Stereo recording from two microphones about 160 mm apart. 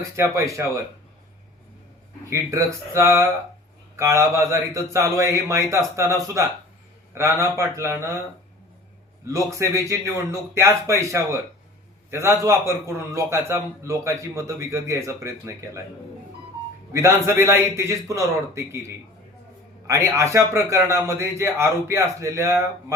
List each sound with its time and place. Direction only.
0.2 s a man's voice: 20° right (ahead or behind)
2.3 s a man's voice: 20° right (ahead or behind)
9.2 s a man's voice: 20° right (ahead or behind)
16.9 s a man's voice: 15° right (ahead or behind)
19.9 s a man's voice: 20° right (ahead or behind)